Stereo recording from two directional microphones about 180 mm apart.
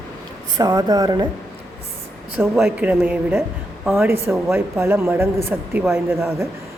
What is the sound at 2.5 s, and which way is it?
Speech, 5° right (ahead or behind).